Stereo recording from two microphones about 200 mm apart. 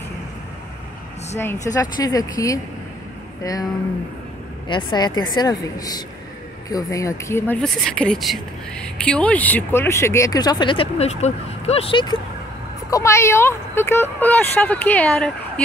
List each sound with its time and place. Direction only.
1.4 s speech: 15° left (ahead or behind)
4.6 s speech: 25° left (ahead or behind); by 15.6 s 5° left (ahead or behind)